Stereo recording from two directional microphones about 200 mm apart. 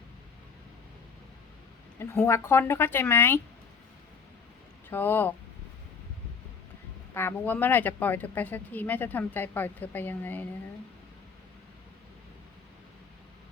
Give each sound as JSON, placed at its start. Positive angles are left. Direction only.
{"t": 2.0, "sound": "speech", "side_deg": 10}
{"t": 4.9, "sound": "speech", "side_deg": 10}
{"t": 7.1, "sound": "speech", "side_deg": 10}